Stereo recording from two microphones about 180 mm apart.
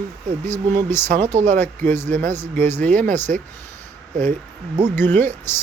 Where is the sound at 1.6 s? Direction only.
10° left (ahead or behind).